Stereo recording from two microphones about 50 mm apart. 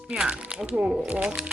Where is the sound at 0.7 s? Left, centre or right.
Right.